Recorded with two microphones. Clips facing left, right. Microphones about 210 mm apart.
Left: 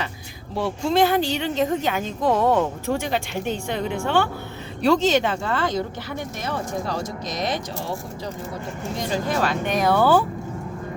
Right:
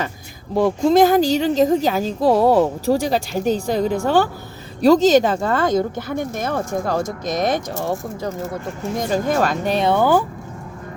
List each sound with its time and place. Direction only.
0.5 s speech: 40° right (ahead or behind)
9.7 s speech: 25° right (ahead or behind)